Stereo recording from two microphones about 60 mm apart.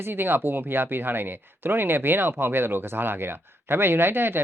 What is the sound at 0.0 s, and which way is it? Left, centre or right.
Speech, right.